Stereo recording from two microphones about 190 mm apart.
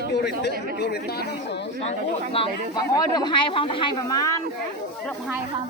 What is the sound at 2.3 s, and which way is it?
Speech, 25° left (ahead or behind).